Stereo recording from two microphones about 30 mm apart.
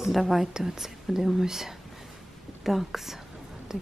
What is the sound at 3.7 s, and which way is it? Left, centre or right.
Speech, centre.